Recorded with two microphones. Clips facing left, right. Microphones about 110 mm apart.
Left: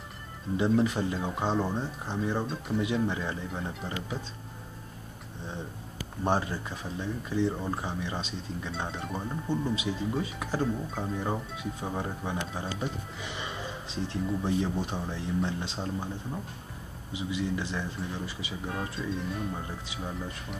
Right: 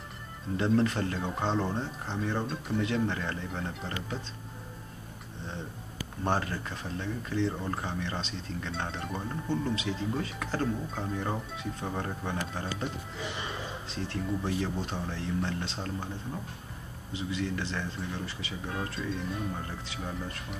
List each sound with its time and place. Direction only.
0.7 s speech: 10° left (ahead or behind)
2.8 s speech: 15° left (ahead or behind)
6.2 s speech: 15° left (ahead or behind)
13.8 s speech: 20° left (ahead or behind)
17.1 s speech: 15° left (ahead or behind)
18.9 s speech: centre (ahead or behind)
19.6 s speech: 15° left (ahead or behind)